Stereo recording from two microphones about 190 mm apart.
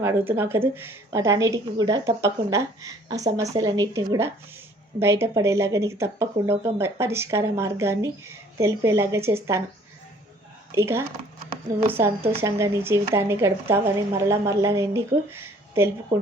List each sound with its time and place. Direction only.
0.0 s speech: 10° right (ahead or behind)
10.7 s speech: 15° right (ahead or behind)